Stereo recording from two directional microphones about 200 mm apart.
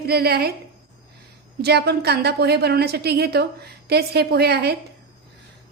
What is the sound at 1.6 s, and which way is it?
A woman's voice, 55° right (ahead or behind).